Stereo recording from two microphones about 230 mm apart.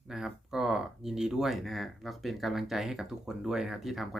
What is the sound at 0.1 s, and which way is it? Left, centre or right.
Speech, centre.